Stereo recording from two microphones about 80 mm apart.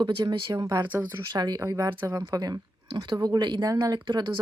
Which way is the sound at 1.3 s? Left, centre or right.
Right.